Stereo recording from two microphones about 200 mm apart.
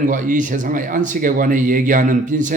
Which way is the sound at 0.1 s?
40° right (ahead or behind).